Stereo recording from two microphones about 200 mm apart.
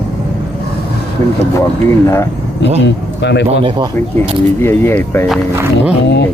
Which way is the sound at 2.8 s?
60° left (ahead or behind).